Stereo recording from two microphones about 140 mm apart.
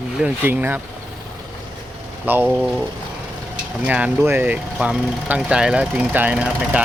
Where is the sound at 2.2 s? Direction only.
15° right (ahead or behind).